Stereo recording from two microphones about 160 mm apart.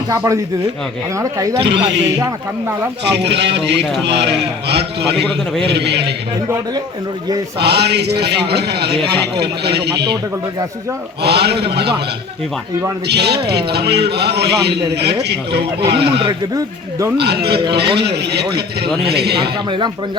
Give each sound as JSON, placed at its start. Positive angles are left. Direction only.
{"t": 1.1, "sound": "speech", "side_deg": -20}
{"t": 1.6, "sound": "a man's voice", "side_deg": -90}
{"t": 2.1, "sound": "speech", "side_deg": -20}
{"t": 3.0, "sound": "a man's voice", "side_deg": -90}
{"t": 7.6, "sound": "a man's voice", "side_deg": -90}
{"t": 11.2, "sound": "a man's voice", "side_deg": -90}
{"t": 13.1, "sound": "a man's voice", "side_deg": -90}